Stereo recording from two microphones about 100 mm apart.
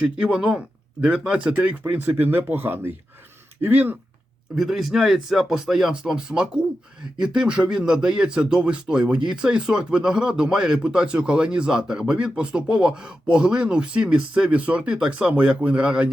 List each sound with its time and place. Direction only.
0.2 s speech: 10° right (ahead or behind)
4.5 s speech: 5° right (ahead or behind)